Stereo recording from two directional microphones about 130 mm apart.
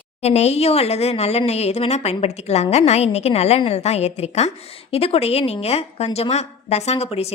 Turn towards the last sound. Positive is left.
turn(degrees=55)  # may be behind; listen again after turning